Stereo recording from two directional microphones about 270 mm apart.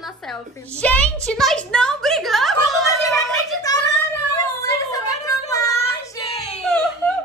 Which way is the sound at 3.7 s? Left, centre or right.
Centre.